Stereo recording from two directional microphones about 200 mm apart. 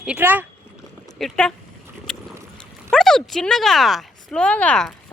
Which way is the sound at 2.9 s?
Centre (ahead or behind).